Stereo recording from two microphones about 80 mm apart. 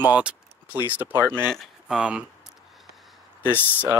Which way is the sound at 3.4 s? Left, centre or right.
Right.